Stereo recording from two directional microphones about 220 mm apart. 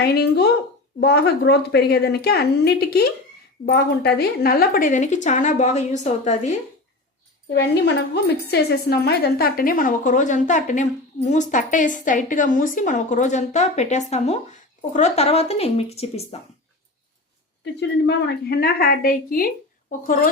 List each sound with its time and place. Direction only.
0.0 s a woman's voice: 50° left (ahead or behind); by 6.6 s 30° left (ahead or behind)
7.5 s a woman's voice: 50° left (ahead or behind); by 16.4 s 30° left (ahead or behind)
17.7 s a woman's voice: 50° left (ahead or behind)